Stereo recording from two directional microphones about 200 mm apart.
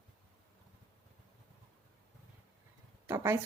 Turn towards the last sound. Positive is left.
turn(degrees=-15)  # may be behind; listen again after turning